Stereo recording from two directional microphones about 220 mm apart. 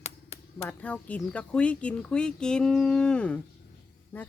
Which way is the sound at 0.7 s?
5° left (ahead or behind).